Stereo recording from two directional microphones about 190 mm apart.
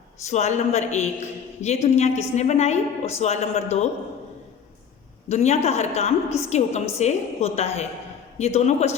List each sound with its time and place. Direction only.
0.3 s a woman's voice: 35° left (ahead or behind)
5.3 s a woman's voice: 35° left (ahead or behind)